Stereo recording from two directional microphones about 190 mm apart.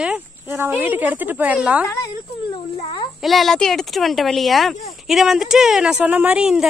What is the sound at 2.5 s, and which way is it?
Speech, 30° left (ahead or behind).